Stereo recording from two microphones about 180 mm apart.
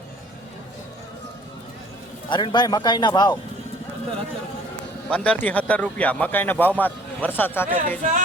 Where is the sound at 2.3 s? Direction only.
25° left (ahead or behind).